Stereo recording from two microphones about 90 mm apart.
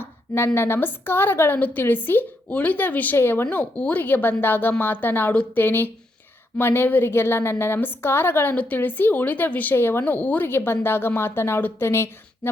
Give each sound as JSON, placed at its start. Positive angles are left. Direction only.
{"t": 0.0, "sound": "a woman's voice", "side_deg": 30}